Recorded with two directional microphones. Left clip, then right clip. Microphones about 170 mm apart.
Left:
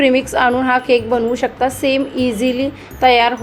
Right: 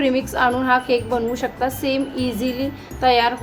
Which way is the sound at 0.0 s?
15° left (ahead or behind).